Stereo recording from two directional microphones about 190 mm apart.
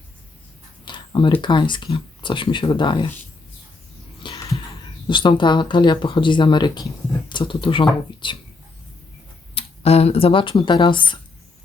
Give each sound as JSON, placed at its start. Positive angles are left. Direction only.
{"t": 0.9, "sound": "speech", "side_deg": 25}
{"t": 4.2, "sound": "a sound", "side_deg": 25}
{"t": 5.0, "sound": "speech", "side_deg": 25}
{"t": 9.6, "sound": "speech", "side_deg": 30}